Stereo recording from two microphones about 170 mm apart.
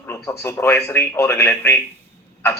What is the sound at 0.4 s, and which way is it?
A man's voice, 15° left (ahead or behind).